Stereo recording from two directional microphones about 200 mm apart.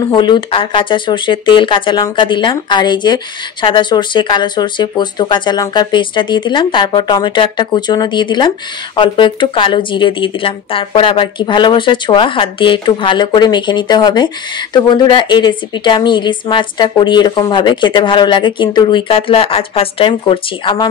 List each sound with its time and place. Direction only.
0.0 s speech: 20° left (ahead or behind)